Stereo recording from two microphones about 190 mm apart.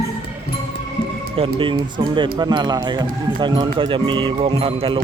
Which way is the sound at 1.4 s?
25° right (ahead or behind).